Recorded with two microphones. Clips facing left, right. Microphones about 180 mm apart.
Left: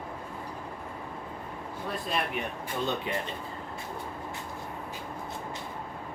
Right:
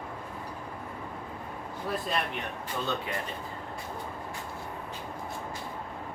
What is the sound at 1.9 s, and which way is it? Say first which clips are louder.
Speech: right 1 dB; centre (ahead or behind).